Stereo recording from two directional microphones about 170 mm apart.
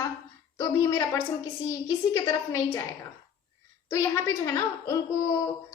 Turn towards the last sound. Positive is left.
turn(degrees=20)  # may be behind; listen again after turning